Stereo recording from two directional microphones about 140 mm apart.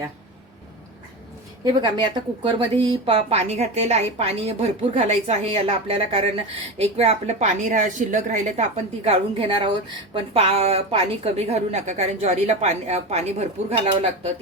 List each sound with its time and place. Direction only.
1.8 s a woman's voice: 30° right (ahead or behind); by 8.6 s 60° right (ahead or behind)
8.7 s a woman's voice: 40° right (ahead or behind)